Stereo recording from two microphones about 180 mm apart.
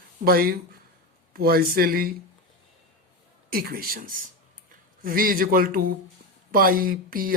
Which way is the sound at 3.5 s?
55° right (ahead or behind).